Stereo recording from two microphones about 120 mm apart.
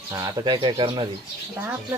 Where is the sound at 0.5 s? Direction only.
45° right (ahead or behind).